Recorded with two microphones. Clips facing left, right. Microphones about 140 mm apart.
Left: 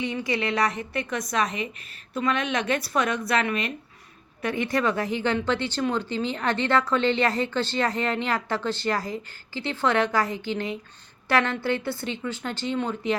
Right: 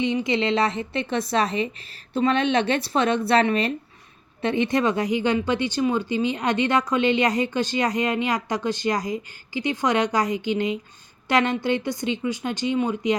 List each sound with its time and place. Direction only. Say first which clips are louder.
0.0 s a woman's voice: right 5 dB; 20° right (ahead or behind)